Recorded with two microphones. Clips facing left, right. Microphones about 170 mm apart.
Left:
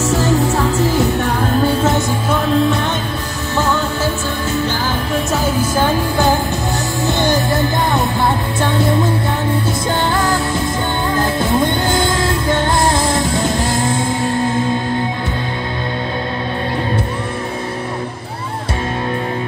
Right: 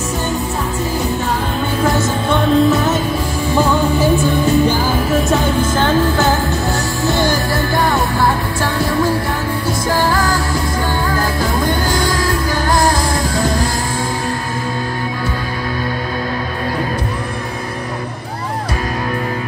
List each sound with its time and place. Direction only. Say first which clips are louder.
0.7 s music: left 4 dB; 80° left
1.8 s music: even; 20° left (ahead or behind)
2.2 s music: right 4 dB; centre (ahead or behind)
3.5 s music: right 3 dB; 15° right (ahead or behind)
5.1 s music: right 2 dB; 5° left (ahead or behind); by 13.2 s 25° left (ahead or behind)